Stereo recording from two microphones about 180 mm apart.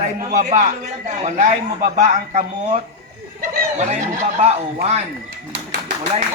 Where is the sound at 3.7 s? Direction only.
40° right (ahead or behind).